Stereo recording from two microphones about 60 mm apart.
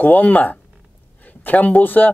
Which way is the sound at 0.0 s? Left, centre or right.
Left.